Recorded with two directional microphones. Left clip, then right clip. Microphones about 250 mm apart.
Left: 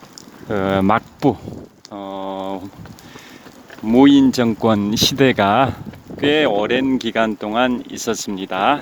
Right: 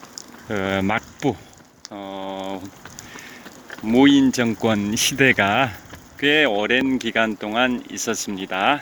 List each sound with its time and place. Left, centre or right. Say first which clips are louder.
0.5 s speech: left 5 dB; centre
1.9 s a sound: left 4 dB; centre
3.8 s speech: left 3 dB; centre